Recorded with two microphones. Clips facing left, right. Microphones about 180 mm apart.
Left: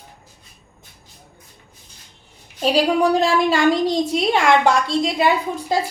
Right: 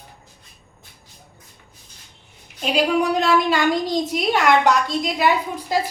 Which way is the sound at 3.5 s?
25° left (ahead or behind).